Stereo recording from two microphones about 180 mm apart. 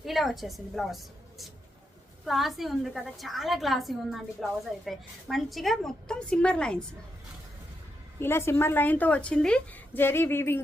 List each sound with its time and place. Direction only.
0.0 s a woman's voice: centre (ahead or behind)
8.2 s a woman's voice: 15° left (ahead or behind)